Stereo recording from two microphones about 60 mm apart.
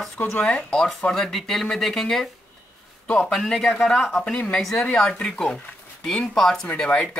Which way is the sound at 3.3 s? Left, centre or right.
Centre.